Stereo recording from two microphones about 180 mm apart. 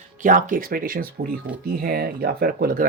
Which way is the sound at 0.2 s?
45° right (ahead or behind).